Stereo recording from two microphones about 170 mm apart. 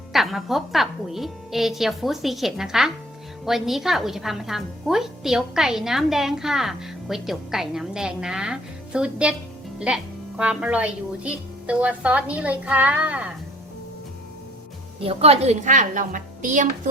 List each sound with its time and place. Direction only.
0.1 s a woman's voice: centre (ahead or behind)
15.0 s a woman's voice: 35° right (ahead or behind)